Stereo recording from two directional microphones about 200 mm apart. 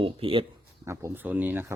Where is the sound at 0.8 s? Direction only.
10° right (ahead or behind).